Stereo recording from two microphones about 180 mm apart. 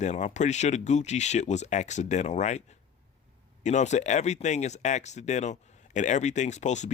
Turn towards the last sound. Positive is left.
turn(degrees=40)  # may be behind; listen again after turning